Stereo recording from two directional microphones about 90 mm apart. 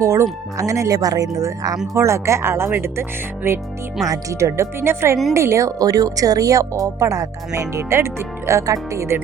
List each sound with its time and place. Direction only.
0.0 s speech: 35° right (ahead or behind)
4.0 s speech: 40° right (ahead or behind)